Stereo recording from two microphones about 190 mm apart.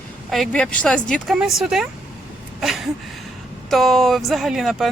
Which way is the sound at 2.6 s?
Centre (ahead or behind).